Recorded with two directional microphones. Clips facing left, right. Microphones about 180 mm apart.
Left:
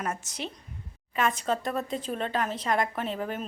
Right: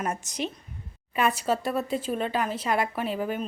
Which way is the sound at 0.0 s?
20° right (ahead or behind).